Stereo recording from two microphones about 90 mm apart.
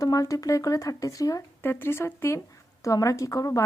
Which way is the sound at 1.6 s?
25° left (ahead or behind).